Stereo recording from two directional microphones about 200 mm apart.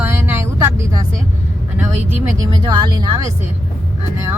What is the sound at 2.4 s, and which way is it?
Speech, 20° right (ahead or behind).